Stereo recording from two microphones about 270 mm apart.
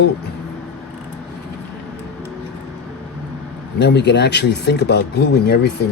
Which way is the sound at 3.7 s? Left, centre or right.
Left.